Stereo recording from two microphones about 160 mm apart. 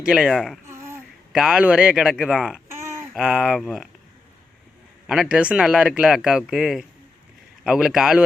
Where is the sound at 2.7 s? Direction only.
15° right (ahead or behind).